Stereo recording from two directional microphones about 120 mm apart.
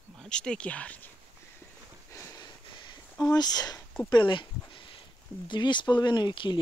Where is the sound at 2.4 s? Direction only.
40° left (ahead or behind).